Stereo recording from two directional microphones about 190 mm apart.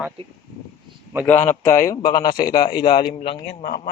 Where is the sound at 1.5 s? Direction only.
15° left (ahead or behind).